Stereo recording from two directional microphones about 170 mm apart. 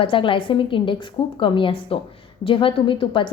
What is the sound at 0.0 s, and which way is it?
A woman's voice, 30° left (ahead or behind).